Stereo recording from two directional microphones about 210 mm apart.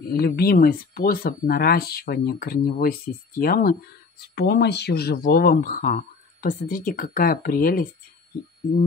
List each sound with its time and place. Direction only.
0.2 s speech: 45° left (ahead or behind)